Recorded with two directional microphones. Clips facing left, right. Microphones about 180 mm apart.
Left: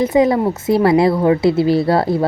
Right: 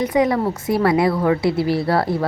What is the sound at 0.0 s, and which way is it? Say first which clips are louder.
A woman's voice: left 4 dB; 25° left (ahead or behind).